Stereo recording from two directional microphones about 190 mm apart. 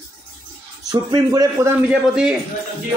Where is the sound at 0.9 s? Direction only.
20° right (ahead or behind).